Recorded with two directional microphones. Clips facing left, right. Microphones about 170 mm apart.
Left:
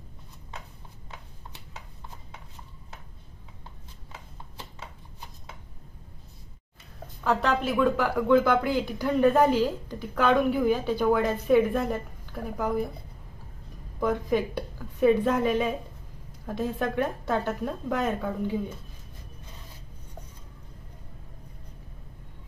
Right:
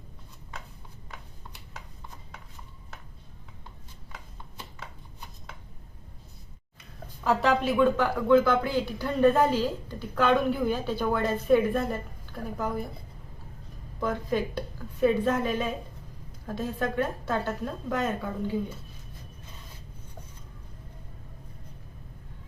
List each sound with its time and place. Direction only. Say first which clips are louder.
7.3 s speech: right 1 dB; 5° right (ahead or behind)
7.7 s speech: right 1 dB; 10° left (ahead or behind)
14.0 s speech: left 3 dB; 15° left (ahead or behind)